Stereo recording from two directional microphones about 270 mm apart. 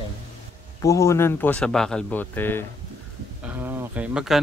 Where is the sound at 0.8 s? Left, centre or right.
Centre.